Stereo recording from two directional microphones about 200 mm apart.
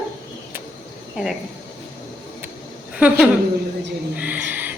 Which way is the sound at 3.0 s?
5° right (ahead or behind).